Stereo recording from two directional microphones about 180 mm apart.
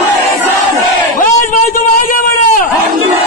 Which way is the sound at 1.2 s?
45° left (ahead or behind).